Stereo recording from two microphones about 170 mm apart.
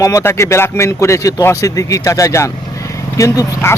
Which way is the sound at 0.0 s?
15° left (ahead or behind).